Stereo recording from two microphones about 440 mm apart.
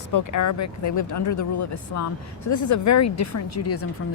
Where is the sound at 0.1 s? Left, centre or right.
Left.